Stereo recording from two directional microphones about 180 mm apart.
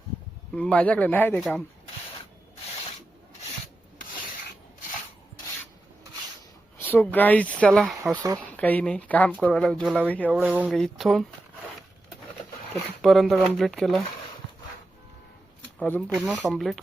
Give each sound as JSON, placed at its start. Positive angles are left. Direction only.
{"t": 0.5, "sound": "speech", "side_deg": 5}
{"t": 6.7, "sound": "speech", "side_deg": 10}
{"t": 8.1, "sound": "speech", "side_deg": -20}
{"t": 8.4, "sound": "speech", "side_deg": 10}
{"t": 10.1, "sound": "speech", "side_deg": 5}
{"t": 10.4, "sound": "speech", "side_deg": -5}
{"t": 13.0, "sound": "speech", "side_deg": 0}
{"t": 15.8, "sound": "speech", "side_deg": 10}